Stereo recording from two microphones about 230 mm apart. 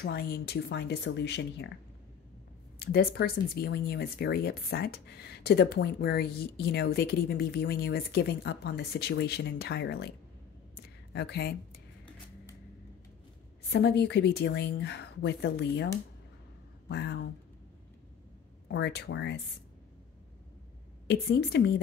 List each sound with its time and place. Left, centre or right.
0.0 s speech: left
2.8 s speech: left
10.8 s a sound: left
13.7 s speech: left
16.9 s speech: left
18.7 s speech: left
21.1 s speech: left